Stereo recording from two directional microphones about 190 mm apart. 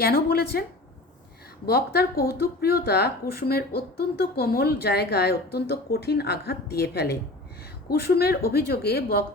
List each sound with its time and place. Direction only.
0.0 s speech: 55° left (ahead or behind)
1.6 s speech: 55° left (ahead or behind)